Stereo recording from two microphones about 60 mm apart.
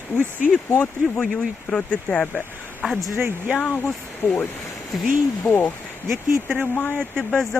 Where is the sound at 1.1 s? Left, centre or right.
Centre.